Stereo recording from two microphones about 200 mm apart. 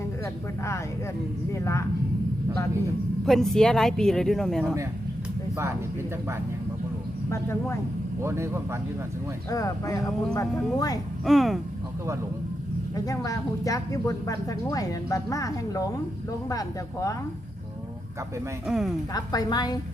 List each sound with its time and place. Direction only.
3.2 s speech: centre (ahead or behind)
8.2 s speech: 15° right (ahead or behind)
9.5 s speech: 15° left (ahead or behind)
11.3 s speech: centre (ahead or behind)
13.1 s speech: 15° left (ahead or behind)
18.7 s speech: centre (ahead or behind)
19.1 s a woman's voice: 20° left (ahead or behind)